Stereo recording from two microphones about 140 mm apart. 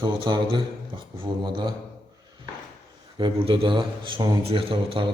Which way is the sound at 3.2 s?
35° right (ahead or behind).